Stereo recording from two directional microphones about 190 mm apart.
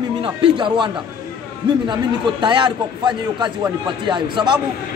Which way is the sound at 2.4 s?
25° right (ahead or behind).